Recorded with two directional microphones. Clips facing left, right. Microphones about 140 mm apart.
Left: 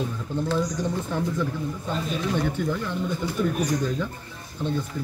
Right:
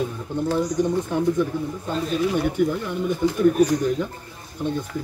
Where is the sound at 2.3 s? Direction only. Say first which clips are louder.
Right 4 dB; 15° right (ahead or behind).